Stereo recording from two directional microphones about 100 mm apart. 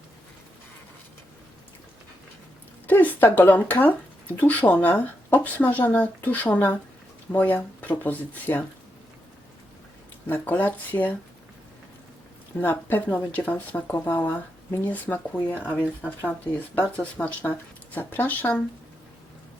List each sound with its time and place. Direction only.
2.8 s speech: 15° left (ahead or behind)
10.2 s speech: 20° left (ahead or behind)
12.5 s speech: 20° left (ahead or behind)